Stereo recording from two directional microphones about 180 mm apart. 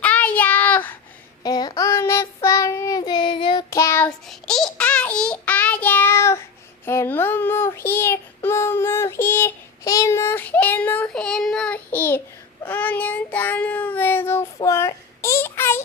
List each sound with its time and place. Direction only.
0.0 s child singing: 10° left (ahead or behind)
1.5 s child singing: 20° left (ahead or behind)
4.3 s child singing: centre (ahead or behind)